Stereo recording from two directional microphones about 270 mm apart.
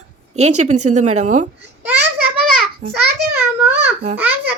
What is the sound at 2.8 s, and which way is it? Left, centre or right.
Speech, right.